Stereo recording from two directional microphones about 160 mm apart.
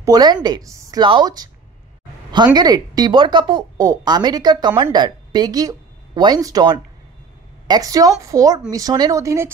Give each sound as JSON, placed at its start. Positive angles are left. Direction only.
{"t": 0.0, "sound": "a woman's voice", "side_deg": -25}